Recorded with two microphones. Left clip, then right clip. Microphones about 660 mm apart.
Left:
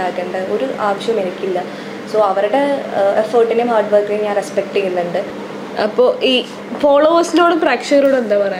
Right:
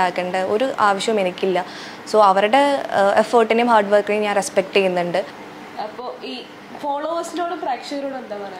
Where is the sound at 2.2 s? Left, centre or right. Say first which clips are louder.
Even; right.